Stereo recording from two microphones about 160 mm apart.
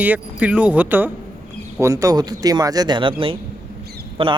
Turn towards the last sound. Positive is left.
turn(degrees=-35)  # may be behind; listen again after turning